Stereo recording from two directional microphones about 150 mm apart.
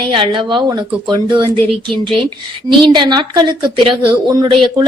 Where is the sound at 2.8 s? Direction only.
30° right (ahead or behind).